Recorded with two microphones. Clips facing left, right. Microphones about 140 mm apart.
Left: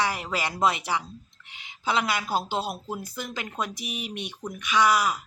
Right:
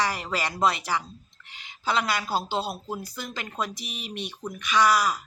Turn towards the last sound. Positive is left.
turn(degrees=10)  # may be behind; listen again after turning